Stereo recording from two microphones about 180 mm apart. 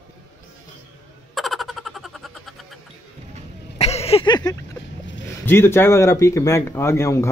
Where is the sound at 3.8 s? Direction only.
35° left (ahead or behind).